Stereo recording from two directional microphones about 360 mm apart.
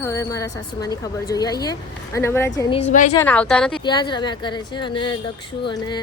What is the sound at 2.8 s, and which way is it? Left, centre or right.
Speech, left.